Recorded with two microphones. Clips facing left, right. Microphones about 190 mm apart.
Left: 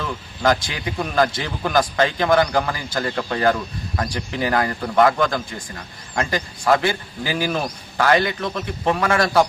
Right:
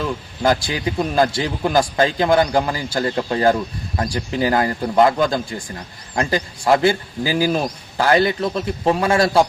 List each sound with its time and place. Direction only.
0.4 s a man's voice: 30° right (ahead or behind)